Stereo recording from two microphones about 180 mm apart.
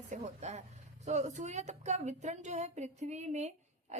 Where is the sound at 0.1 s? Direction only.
40° right (ahead or behind).